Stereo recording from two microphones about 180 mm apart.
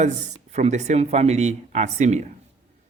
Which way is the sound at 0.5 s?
40° right (ahead or behind).